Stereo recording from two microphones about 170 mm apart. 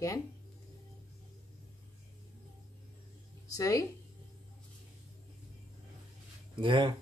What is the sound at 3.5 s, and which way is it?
Speech, 20° left (ahead or behind).